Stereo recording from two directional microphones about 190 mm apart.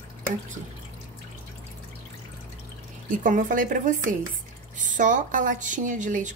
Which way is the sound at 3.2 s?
45° right (ahead or behind).